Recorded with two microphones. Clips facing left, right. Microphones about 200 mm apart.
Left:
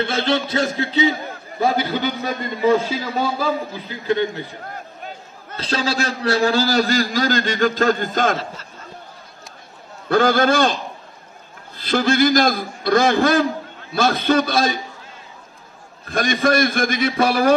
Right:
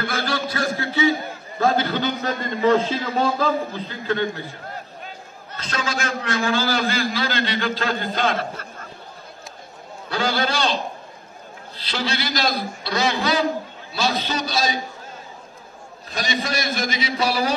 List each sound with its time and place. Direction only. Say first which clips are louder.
0.0 s a man's voice: left 5 dB; 25° left (ahead or behind)
5.6 s a man's voice: left 5 dB; 35° left (ahead or behind)
10.0 s a man's voice: left 8 dB; 50° left (ahead or behind)
16.1 s a man's voice: left 8 dB; 55° left (ahead or behind)